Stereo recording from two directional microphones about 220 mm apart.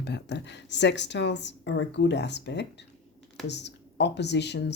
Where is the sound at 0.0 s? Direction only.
50° left (ahead or behind).